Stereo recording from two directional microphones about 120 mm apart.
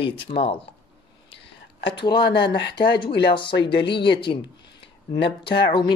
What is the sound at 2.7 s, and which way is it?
Speech, 40° left (ahead or behind).